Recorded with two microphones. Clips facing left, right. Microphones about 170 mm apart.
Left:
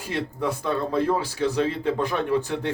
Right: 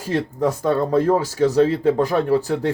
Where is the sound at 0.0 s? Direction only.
40° right (ahead or behind).